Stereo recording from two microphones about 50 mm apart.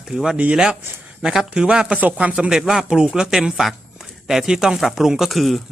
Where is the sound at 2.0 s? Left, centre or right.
Right.